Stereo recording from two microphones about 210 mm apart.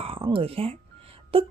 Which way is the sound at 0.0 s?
25° right (ahead or behind).